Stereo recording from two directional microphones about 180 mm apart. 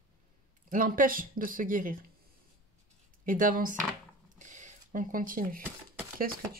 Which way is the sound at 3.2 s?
50° right (ahead or behind).